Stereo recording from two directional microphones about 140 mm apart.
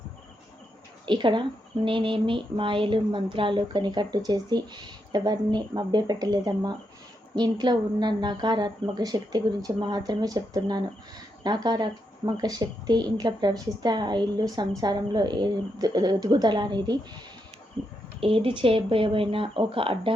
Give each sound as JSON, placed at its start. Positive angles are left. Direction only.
{"t": 1.0, "sound": "speech", "side_deg": -35}
{"t": 18.2, "sound": "speech", "side_deg": -40}